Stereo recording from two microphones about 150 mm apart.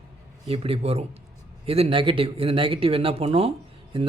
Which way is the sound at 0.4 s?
40° right (ahead or behind).